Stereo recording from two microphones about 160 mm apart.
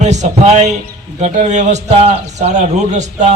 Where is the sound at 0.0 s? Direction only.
45° right (ahead or behind).